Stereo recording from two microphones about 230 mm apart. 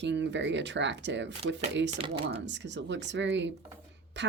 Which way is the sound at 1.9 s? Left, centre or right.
Right.